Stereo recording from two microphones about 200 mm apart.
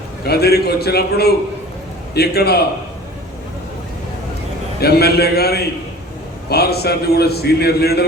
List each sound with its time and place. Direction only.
0.3 s a man's voice: 55° left (ahead or behind)
4.8 s a man's voice: 50° left (ahead or behind)